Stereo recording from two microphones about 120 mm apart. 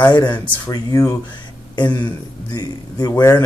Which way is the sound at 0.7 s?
30° left (ahead or behind).